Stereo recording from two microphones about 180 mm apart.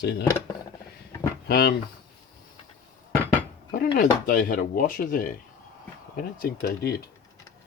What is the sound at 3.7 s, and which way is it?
Speech, 55° left (ahead or behind).